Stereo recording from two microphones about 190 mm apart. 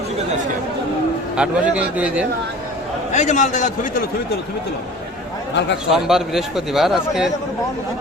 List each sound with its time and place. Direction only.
1.4 s a man's voice: 5° right (ahead or behind)
3.1 s a man's voice: 40° left (ahead or behind)
5.9 s a man's voice: centre (ahead or behind)